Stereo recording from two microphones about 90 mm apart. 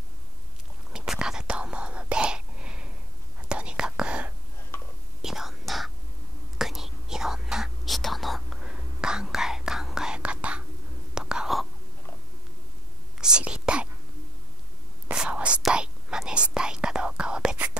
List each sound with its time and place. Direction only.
0.9 s whispering: 5° right (ahead or behind)
13.2 s whispering: 10° right (ahead or behind)
15.0 s whispering: 10° right (ahead or behind)